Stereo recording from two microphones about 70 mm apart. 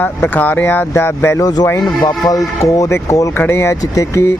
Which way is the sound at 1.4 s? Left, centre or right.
Left.